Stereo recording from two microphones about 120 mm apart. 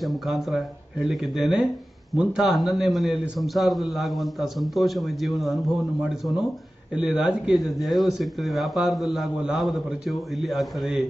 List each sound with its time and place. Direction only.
0.0 s a man's voice: centre (ahead or behind)